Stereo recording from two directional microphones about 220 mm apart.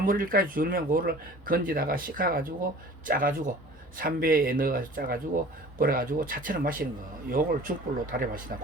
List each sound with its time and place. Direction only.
0.0 s speech: 40° right (ahead or behind)